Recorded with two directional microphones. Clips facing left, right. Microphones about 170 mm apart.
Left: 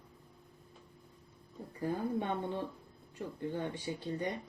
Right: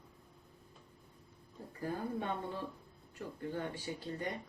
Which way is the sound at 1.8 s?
20° left (ahead or behind).